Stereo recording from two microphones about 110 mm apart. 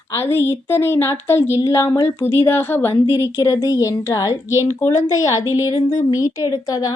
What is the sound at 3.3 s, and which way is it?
A woman's voice, 30° left (ahead or behind).